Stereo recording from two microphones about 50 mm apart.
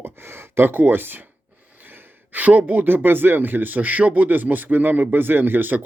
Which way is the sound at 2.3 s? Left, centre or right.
Right.